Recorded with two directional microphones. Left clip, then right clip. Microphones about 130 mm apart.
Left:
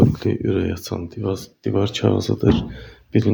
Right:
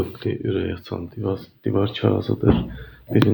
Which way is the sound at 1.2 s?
50° left (ahead or behind).